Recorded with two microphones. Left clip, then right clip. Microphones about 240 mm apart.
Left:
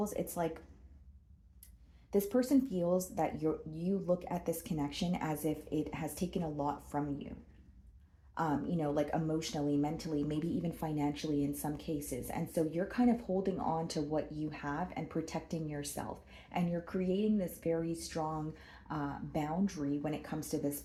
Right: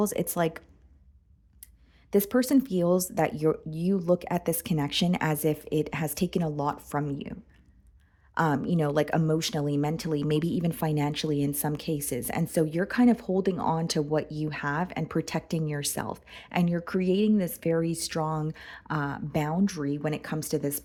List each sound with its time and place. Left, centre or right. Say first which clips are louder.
0.0 s speech: right 9 dB; right
2.0 s speech: right 7 dB; right
8.4 s speech: right 9 dB; right